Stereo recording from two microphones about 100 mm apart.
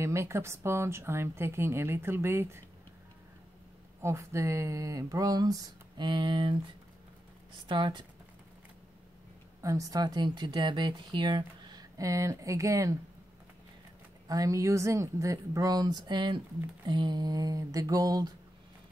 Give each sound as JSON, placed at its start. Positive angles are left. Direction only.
{"t": 0.0, "sound": "a woman's voice", "side_deg": -30}
{"t": 4.0, "sound": "speech", "side_deg": -30}
{"t": 7.6, "sound": "speech", "side_deg": -50}
{"t": 9.6, "sound": "speech", "side_deg": -35}
{"t": 12.0, "sound": "speech", "side_deg": -30}
{"t": 14.2, "sound": "speech", "side_deg": -35}